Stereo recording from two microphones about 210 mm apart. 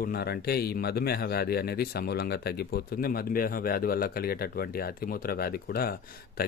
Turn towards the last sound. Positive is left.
turn(degrees=45)  # may be behind; listen again after turning